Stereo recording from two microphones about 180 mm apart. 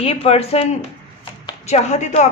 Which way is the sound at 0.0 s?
35° left (ahead or behind).